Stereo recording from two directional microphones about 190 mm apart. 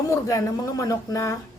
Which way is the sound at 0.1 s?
15° left (ahead or behind).